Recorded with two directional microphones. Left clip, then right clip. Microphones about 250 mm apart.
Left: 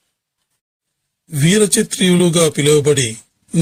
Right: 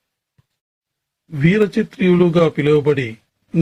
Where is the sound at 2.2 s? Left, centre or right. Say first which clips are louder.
Even; left.